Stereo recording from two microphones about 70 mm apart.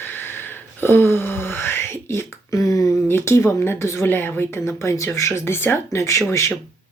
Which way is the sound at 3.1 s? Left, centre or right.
Left.